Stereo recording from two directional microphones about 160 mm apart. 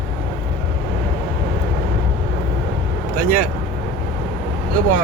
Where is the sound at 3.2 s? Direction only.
60° right (ahead or behind).